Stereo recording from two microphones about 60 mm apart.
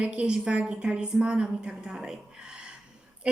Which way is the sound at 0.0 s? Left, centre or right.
Centre.